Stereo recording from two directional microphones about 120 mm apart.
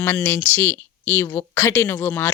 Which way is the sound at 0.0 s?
20° left (ahead or behind).